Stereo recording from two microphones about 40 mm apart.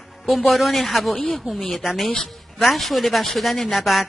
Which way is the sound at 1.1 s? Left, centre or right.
Centre.